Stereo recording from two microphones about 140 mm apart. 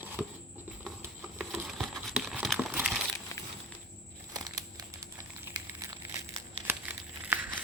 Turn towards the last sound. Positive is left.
turn(degrees=-15)  # may be behind; listen again after turning